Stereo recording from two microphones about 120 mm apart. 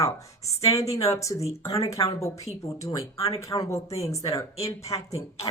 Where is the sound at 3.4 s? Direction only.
25° left (ahead or behind).